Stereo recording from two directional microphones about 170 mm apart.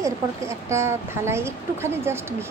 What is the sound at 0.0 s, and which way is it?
A woman's voice, 15° right (ahead or behind).